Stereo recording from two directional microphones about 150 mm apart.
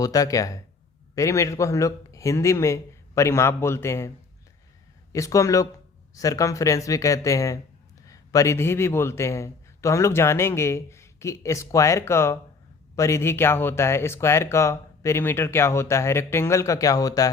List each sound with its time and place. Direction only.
0.0 s speech: 25° left (ahead or behind)
5.1 s a man's voice: 20° left (ahead or behind)